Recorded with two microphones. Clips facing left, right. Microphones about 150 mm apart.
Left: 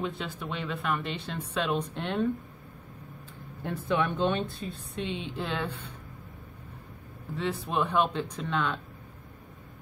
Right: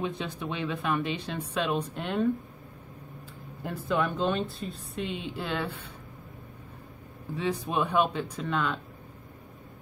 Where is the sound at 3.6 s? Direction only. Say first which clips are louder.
Even; centre (ahead or behind).